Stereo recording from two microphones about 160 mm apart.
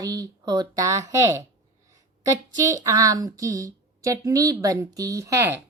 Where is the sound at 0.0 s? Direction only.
20° right (ahead or behind).